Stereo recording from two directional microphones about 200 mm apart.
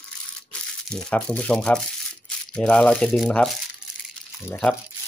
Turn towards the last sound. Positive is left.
turn(degrees=5)  # may be behind; listen again after turning